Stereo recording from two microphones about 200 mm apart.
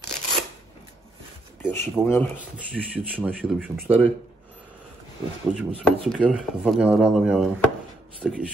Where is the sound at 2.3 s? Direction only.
5° right (ahead or behind).